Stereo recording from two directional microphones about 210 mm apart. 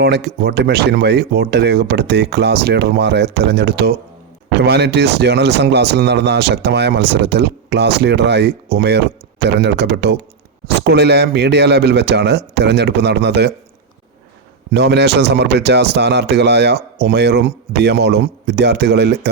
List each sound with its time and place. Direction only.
0.0 s speech: 50° right (ahead or behind)
14.7 s speech: 55° right (ahead or behind)